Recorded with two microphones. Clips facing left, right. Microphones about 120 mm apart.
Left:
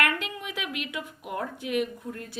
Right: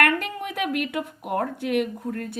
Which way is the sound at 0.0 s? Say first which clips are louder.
Right 6 dB; 50° right (ahead or behind).